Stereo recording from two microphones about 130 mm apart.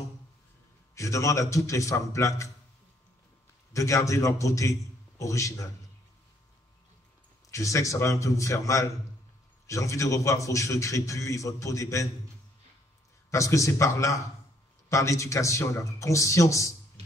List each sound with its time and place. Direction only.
0.9 s a man's voice: 25° left (ahead or behind)
3.7 s a man's voice: 25° left (ahead or behind)
7.5 s a man's voice: 25° left (ahead or behind)
13.3 s a man's voice: 25° left (ahead or behind)